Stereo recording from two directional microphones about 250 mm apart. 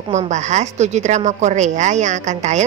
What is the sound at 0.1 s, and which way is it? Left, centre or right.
A woman's voice, right.